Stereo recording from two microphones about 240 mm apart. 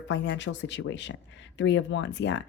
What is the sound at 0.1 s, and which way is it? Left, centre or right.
Speech, left.